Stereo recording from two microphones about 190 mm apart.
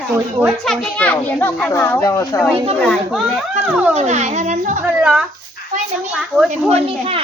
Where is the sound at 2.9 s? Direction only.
Centre (ahead or behind).